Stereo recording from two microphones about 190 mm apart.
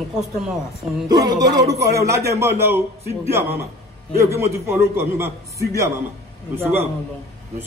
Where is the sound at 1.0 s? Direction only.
20° right (ahead or behind).